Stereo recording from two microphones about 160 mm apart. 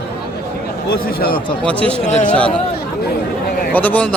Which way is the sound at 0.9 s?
70° left (ahead or behind).